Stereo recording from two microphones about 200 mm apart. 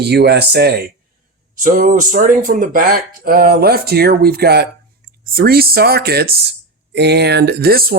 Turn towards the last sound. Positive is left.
turn(degrees=-50)  # may be behind; listen again after turning